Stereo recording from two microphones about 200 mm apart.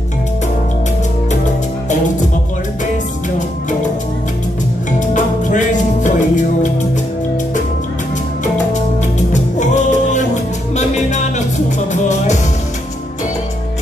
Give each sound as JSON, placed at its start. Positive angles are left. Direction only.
{"t": 6.0, "sound": "music", "side_deg": 40}
{"t": 9.3, "sound": "music", "side_deg": 35}